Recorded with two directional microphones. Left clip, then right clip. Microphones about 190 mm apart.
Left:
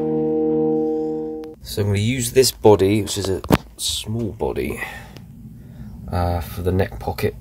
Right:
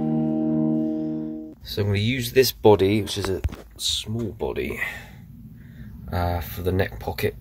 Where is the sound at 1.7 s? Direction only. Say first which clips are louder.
Left 2 dB; centre (ahead or behind).